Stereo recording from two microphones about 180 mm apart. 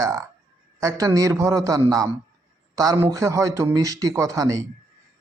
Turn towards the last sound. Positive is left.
turn(degrees=-15)  # may be behind; listen again after turning